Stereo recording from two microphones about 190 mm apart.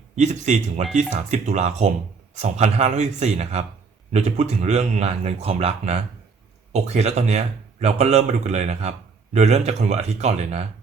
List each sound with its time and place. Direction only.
0.2 s speech: 35° right (ahead or behind)